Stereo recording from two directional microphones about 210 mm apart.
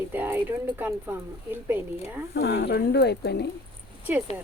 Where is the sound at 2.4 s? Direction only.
50° left (ahead or behind).